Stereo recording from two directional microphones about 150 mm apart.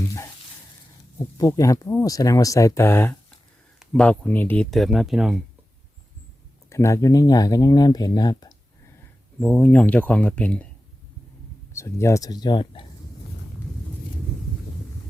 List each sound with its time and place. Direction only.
1.4 s speech: 20° left (ahead or behind)
3.8 s speech: 5° left (ahead or behind)
6.7 s speech: 20° left (ahead or behind)
9.4 s speech: 10° left (ahead or behind)
11.7 s speech: 20° left (ahead or behind); by 12.9 s 35° left (ahead or behind)